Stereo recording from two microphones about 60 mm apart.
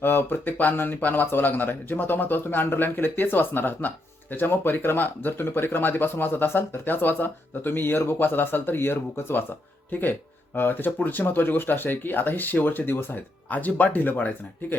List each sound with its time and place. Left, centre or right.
0.0 s speech: left